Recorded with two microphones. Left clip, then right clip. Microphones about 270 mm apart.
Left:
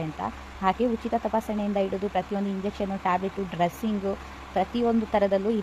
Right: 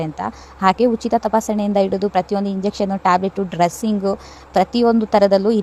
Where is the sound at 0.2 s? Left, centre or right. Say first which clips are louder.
Right 10 dB; right.